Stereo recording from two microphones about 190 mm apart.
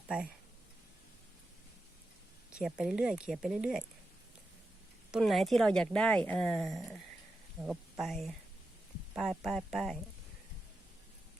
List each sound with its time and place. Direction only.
2.5 s speech: 5° right (ahead or behind)
5.1 s speech: centre (ahead or behind)